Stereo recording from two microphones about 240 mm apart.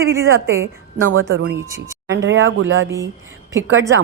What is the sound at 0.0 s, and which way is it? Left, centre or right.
Speech, right.